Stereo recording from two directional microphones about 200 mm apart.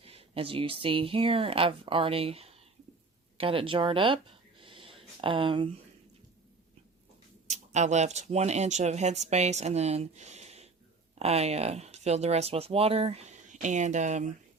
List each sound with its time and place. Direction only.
0.0 s speech: 30° right (ahead or behind)
7.5 s speech: 35° right (ahead or behind)